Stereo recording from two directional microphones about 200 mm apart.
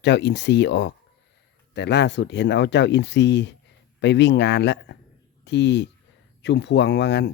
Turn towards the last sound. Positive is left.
turn(degrees=60)  # may be behind; listen again after turning